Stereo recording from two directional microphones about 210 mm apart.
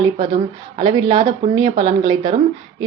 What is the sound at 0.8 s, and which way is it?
A woman's voice, 20° right (ahead or behind).